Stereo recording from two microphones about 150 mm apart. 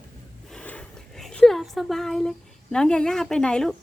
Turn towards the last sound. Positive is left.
turn(degrees=5)  # may be behind; listen again after turning